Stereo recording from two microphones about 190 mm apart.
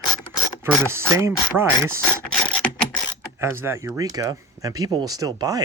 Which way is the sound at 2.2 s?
5° left (ahead or behind).